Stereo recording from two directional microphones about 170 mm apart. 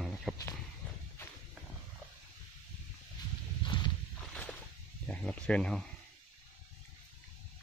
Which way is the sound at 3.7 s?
30° left (ahead or behind).